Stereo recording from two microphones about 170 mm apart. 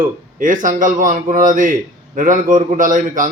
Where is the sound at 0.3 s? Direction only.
50° right (ahead or behind).